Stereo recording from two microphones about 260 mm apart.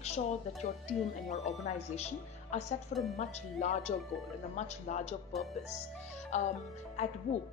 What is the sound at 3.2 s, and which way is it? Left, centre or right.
Speech, left.